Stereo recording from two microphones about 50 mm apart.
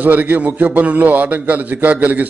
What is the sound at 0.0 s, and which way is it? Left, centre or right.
A man's voice, right.